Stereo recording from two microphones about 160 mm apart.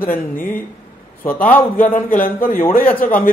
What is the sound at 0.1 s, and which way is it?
Speech, 10° left (ahead or behind).